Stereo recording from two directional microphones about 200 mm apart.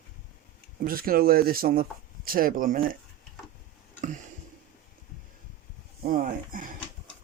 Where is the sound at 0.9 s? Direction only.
45° right (ahead or behind).